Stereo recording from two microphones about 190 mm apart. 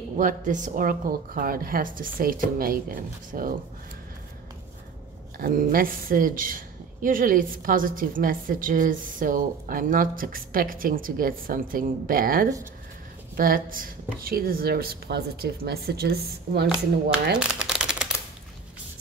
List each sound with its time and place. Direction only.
0.2 s a woman's voice: 40° right (ahead or behind)
5.4 s a woman's voice: 45° right (ahead or behind)
17.4 s a sound: 5° right (ahead or behind)